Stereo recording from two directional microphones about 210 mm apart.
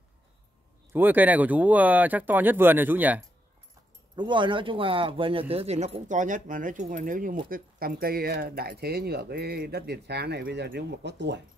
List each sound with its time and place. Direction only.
0.9 s speech: 10° right (ahead or behind)
4.1 s speech: 20° right (ahead or behind); by 11.4 s 55° right (ahead or behind)